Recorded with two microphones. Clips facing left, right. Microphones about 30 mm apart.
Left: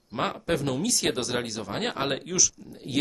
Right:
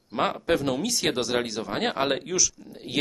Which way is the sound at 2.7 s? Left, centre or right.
Centre.